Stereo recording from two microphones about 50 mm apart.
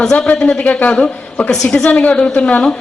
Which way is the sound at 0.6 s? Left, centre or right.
Left.